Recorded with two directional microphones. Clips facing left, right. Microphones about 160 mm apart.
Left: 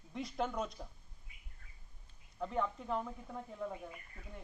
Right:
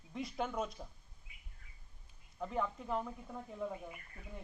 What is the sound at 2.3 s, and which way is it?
Speech, centre (ahead or behind).